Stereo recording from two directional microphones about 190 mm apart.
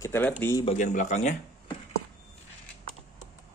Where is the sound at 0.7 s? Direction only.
40° left (ahead or behind).